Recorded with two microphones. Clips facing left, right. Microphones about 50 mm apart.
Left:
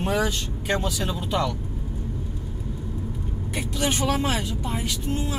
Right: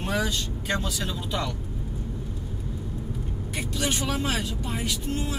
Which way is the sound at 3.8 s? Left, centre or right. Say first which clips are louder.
Left 4 dB; centre.